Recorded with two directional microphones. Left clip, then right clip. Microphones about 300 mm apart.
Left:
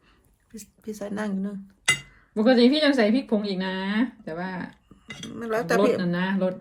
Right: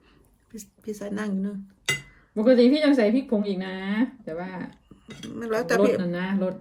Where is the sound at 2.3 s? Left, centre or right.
Left.